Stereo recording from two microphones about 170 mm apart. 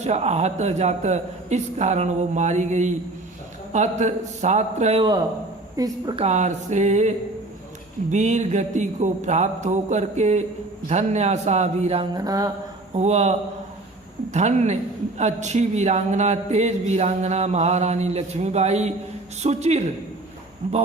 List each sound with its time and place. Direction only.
0.0 s speech: 40° right (ahead or behind)
5.7 s a woman's voice: 20° right (ahead or behind)
6.1 s speech: 40° right (ahead or behind)
8.1 s speech: 45° right (ahead or behind)
12.1 s a woman's voice: 20° right (ahead or behind)
12.9 s speech: 40° right (ahead or behind)
14.3 s speech: 45° right (ahead or behind)